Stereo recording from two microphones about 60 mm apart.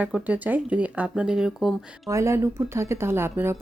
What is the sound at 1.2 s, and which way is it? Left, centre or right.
Speech, centre.